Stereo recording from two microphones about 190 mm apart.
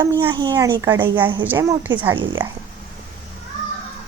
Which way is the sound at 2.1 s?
25° right (ahead or behind).